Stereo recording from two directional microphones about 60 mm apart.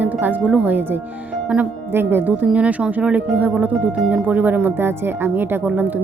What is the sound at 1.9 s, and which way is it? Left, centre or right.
Speech, right.